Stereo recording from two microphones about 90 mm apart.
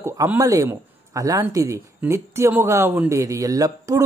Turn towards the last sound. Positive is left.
turn(degrees=-40)  # may be behind; listen again after turning